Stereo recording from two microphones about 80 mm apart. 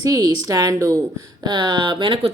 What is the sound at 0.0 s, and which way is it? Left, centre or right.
Speech, right.